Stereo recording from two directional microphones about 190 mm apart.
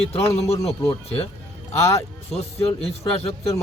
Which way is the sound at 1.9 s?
35° left (ahead or behind).